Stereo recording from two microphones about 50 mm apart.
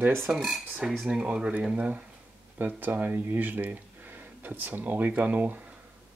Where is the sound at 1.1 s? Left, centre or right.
Centre.